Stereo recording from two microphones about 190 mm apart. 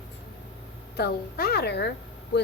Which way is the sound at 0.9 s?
55° left (ahead or behind).